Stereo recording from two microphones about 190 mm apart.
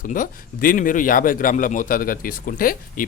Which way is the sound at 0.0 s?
45° left (ahead or behind).